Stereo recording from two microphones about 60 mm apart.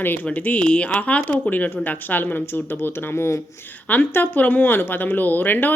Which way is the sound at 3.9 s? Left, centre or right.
Left.